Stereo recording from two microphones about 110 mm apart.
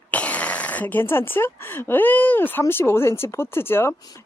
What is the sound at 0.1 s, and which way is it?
Speech, 10° left (ahead or behind).